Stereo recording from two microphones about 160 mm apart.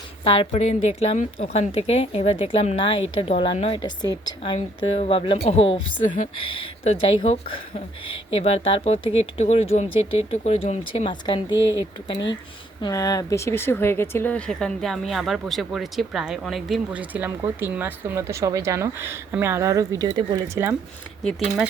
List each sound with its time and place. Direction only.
0.5 s speech: 45° left (ahead or behind); by 11.5 s 30° left (ahead or behind)
12.8 s speech: 20° left (ahead or behind); by 20.7 s 20° right (ahead or behind)
21.2 s speech: 5° right (ahead or behind)